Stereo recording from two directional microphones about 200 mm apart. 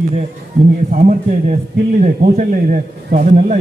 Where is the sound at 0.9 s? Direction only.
40° right (ahead or behind).